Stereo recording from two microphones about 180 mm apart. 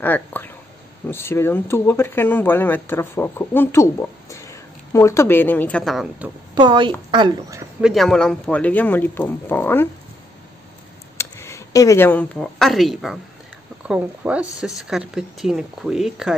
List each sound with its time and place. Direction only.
0.0 s speech: 10° left (ahead or behind)
6.5 s speech: 25° right (ahead or behind)
7.8 s speech: centre (ahead or behind)
11.1 s speech: 15° left (ahead or behind); by 16.3 s centre (ahead or behind)